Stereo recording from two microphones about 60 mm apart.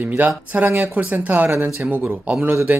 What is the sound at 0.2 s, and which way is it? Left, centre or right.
Speech, right.